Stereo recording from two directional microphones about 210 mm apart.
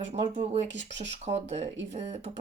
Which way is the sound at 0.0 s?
30° right (ahead or behind).